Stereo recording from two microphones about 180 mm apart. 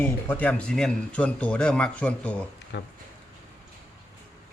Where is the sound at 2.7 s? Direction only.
75° left (ahead or behind).